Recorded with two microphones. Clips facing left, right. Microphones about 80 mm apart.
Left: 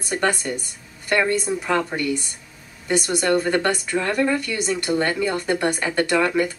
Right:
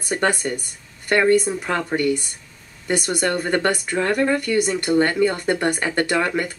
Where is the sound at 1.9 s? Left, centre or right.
Right.